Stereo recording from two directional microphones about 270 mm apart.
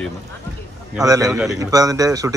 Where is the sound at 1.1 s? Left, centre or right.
Centre.